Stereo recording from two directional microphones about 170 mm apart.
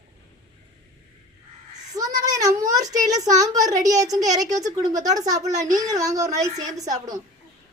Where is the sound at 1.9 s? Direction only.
20° right (ahead or behind).